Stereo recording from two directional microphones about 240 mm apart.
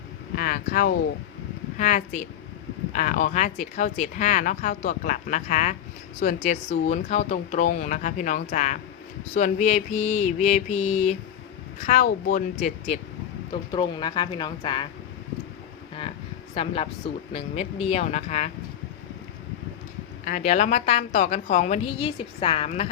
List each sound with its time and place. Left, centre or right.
0.3 s a woman's voice: left
13.7 s a woman's voice: centre
16.6 s a woman's voice: left
20.2 s a woman's voice: left